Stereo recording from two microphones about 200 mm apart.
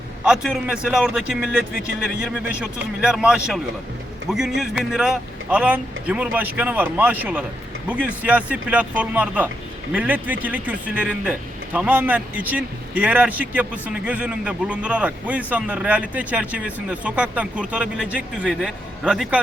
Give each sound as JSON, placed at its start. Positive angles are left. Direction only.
{"t": 0.3, "sound": "a man's voice", "side_deg": 0}
{"t": 3.0, "sound": "a man's voice", "side_deg": -5}